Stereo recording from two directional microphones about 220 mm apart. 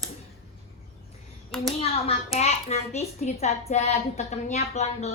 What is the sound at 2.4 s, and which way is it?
A child's voice, 30° left (ahead or behind).